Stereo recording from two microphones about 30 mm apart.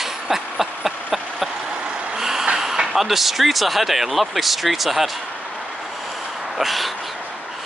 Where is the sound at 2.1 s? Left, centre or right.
Centre.